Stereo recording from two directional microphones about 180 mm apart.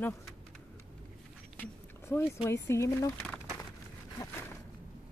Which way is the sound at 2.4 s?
15° left (ahead or behind).